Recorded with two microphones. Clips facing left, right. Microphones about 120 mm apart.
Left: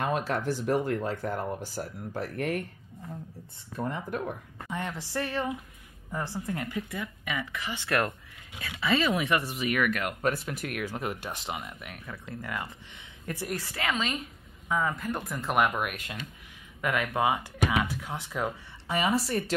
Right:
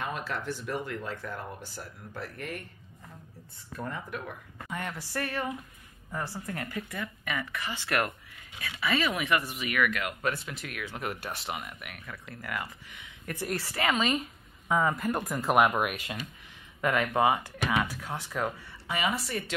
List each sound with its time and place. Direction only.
0.0 s speech: 45° left (ahead or behind)
3.7 s a woman's voice: 25° left (ahead or behind)
8.8 s speech: 25° left (ahead or behind); by 11.0 s 45° left (ahead or behind)
11.2 s speech: 20° left (ahead or behind)
13.4 s a woman's voice: centre (ahead or behind); by 18.5 s 15° left (ahead or behind)
18.9 s speech: 35° left (ahead or behind)